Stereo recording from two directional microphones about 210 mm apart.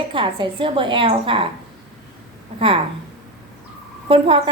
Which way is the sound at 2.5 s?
25° right (ahead or behind).